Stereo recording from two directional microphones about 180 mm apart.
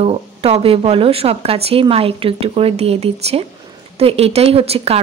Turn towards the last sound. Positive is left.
turn(degrees=-35)  # may be behind; listen again after turning